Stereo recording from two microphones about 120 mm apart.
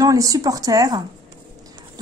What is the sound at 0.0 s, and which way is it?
A woman's voice, 30° right (ahead or behind).